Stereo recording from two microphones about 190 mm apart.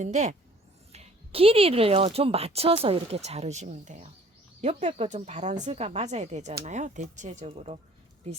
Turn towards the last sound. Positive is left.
turn(degrees=-35)  # may be behind; listen again after turning